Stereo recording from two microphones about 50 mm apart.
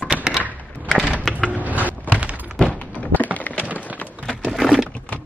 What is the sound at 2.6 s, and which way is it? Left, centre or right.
Thunk, left.